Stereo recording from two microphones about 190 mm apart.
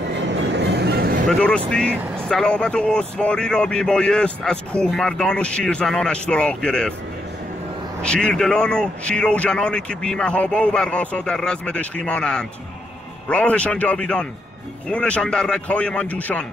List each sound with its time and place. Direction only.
0.1 s vehicle: 70° right (ahead or behind)
1.3 s speech: 5° left (ahead or behind)
8.0 s a man's voice: 5° left (ahead or behind)